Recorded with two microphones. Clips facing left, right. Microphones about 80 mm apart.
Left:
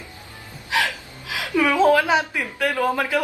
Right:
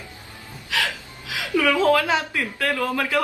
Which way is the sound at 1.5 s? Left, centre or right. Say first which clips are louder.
Left 2 dB; left.